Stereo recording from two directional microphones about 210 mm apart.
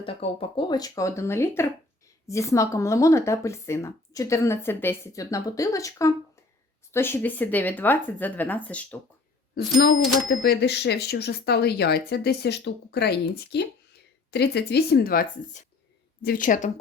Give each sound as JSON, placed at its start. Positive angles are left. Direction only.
{"t": 0.0, "sound": "speech", "side_deg": 25}
{"t": 9.6, "sound": "a woman's voice", "side_deg": 50}